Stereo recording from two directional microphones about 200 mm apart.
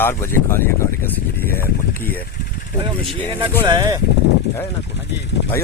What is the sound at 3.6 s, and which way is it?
Speech, 20° right (ahead or behind).